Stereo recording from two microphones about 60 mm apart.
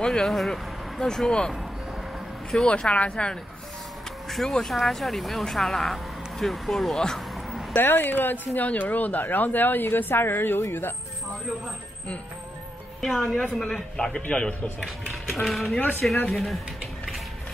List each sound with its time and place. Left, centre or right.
0.0 s speech: centre
2.5 s speech: centre
4.3 s speech: centre
7.7 s speech: left
13.0 s speech: centre
15.3 s speech: centre